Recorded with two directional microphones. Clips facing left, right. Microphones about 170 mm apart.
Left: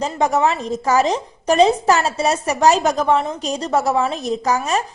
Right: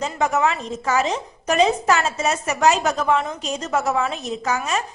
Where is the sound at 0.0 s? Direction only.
35° left (ahead or behind).